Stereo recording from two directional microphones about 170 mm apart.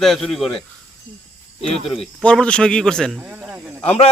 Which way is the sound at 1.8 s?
5° left (ahead or behind).